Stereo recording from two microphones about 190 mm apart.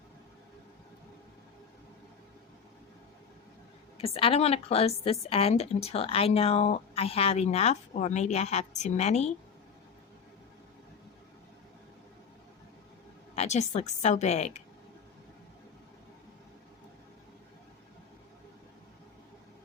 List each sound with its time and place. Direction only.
3.9 s a woman's voice: 30° left (ahead or behind)
13.3 s a woman's voice: 35° left (ahead or behind)